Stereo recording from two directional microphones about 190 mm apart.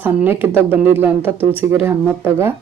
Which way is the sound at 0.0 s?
10° right (ahead or behind).